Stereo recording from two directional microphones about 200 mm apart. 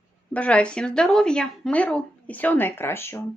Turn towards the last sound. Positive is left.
turn(degrees=10)  # may be behind; listen again after turning